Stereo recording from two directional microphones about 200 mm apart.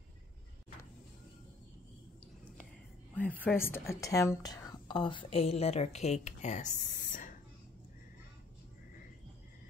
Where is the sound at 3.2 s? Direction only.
5° left (ahead or behind); by 7.3 s 40° left (ahead or behind).